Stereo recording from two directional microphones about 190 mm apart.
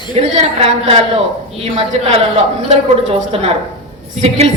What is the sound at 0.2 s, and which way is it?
A woman's voice, 30° right (ahead or behind).